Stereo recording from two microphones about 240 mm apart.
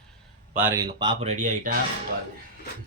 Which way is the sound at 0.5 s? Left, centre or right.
Centre.